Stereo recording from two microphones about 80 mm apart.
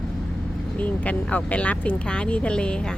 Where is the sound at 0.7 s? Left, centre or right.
Centre.